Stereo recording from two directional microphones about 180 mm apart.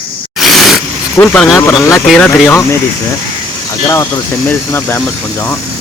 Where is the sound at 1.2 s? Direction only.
5° left (ahead or behind).